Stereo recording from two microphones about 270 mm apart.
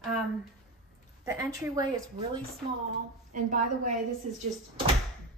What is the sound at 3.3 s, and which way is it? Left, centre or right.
Speech, right.